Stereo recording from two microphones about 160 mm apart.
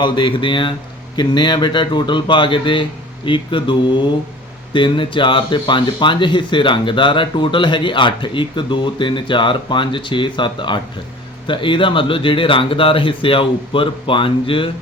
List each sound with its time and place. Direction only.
0.0 s speech: 30° left (ahead or behind)